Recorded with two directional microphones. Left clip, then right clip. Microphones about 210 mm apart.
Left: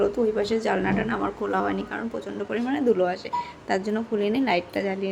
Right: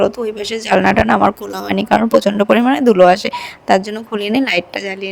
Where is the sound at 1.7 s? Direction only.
50° right (ahead or behind).